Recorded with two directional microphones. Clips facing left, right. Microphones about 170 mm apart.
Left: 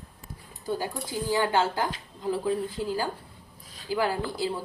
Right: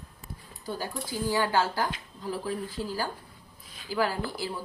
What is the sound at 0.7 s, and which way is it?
Speech, 20° left (ahead or behind).